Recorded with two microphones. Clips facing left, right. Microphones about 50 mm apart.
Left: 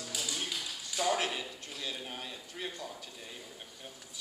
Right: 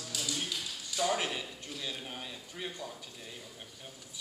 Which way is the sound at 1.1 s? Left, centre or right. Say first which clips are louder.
Left 1 dB; centre.